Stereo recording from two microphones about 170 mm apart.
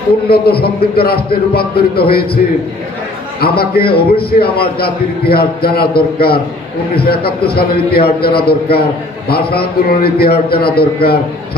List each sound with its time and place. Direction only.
0.3 s a man's voice: 65° left (ahead or behind)
3.4 s a man's voice: 65° left (ahead or behind)